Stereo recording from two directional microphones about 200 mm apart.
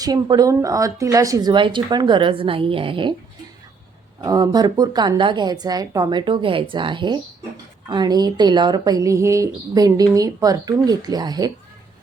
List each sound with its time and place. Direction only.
0.0 s a woman's voice: 20° right (ahead or behind)
4.2 s a woman's voice: 20° right (ahead or behind)